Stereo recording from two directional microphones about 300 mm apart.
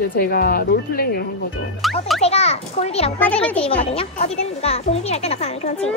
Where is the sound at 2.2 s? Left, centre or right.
Left.